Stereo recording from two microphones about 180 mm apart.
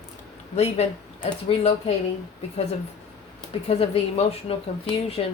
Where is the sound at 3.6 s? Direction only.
35° left (ahead or behind).